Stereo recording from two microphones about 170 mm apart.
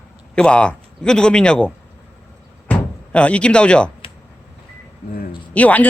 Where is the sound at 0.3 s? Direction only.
5° left (ahead or behind).